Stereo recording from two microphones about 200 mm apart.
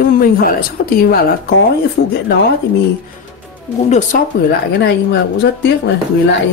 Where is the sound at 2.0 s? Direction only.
65° left (ahead or behind).